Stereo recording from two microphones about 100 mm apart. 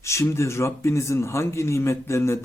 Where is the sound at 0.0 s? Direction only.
30° left (ahead or behind).